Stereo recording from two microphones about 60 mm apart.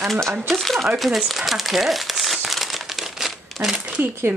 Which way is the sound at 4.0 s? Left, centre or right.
Right.